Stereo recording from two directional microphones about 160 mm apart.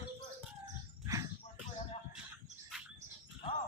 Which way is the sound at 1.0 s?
20° right (ahead or behind).